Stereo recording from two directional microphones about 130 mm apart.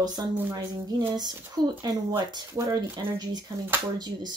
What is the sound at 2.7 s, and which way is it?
Speech, 30° right (ahead or behind).